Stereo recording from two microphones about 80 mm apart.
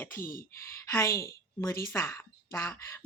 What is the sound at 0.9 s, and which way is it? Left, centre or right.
Speech, left.